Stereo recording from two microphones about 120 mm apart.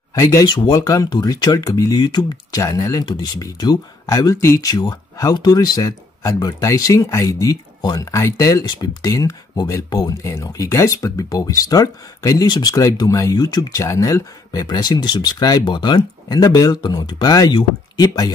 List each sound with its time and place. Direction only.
0.1 s speech: 25° left (ahead or behind)